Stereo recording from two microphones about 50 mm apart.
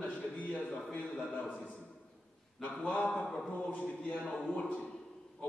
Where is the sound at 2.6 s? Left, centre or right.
Left.